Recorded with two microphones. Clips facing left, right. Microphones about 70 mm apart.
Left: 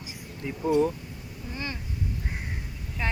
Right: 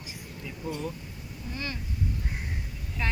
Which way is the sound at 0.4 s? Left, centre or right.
Left.